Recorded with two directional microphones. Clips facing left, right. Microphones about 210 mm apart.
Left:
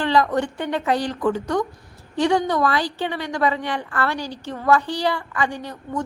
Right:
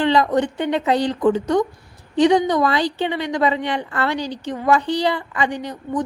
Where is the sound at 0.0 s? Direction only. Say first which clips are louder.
Right 3 dB; 20° right (ahead or behind).